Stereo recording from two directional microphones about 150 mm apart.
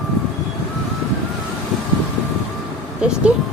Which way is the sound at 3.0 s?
5° right (ahead or behind).